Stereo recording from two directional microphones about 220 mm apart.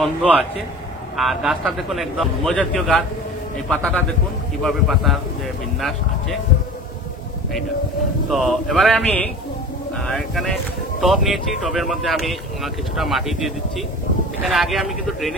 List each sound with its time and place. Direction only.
0.0 s speech: centre (ahead or behind)
8.3 s speech: centre (ahead or behind)